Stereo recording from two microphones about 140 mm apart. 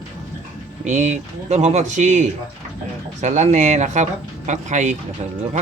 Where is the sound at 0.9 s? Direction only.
60° right (ahead or behind).